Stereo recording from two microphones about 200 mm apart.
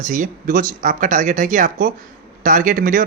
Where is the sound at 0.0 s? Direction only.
40° right (ahead or behind).